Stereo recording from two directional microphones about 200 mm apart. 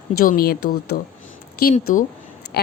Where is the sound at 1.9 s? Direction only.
40° left (ahead or behind).